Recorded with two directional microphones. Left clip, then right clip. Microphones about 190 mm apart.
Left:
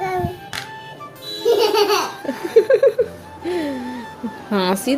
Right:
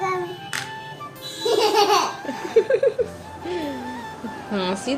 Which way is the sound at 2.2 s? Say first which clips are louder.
Left 5 dB; 35° left (ahead or behind).